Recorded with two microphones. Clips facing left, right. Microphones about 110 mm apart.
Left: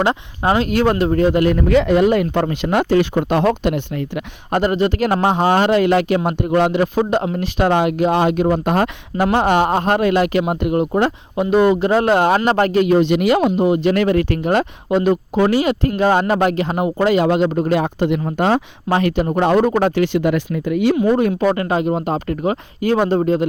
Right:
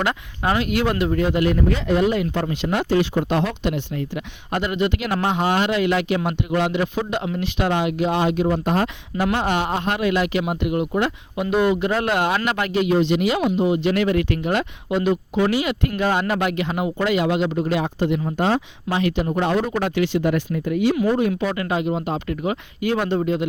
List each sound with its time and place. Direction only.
0.0 s speech: 30° left (ahead or behind); by 1.5 s 45° left (ahead or behind)
1.5 s speech: 75° left (ahead or behind); by 4.2 s 60° left (ahead or behind)
4.5 s speech: 40° left (ahead or behind)
20.1 s speech: 90° left
20.9 s speech: 30° left (ahead or behind)
21.2 s speech: 45° left (ahead or behind)